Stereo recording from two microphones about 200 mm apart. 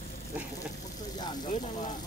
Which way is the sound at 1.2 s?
20° left (ahead or behind).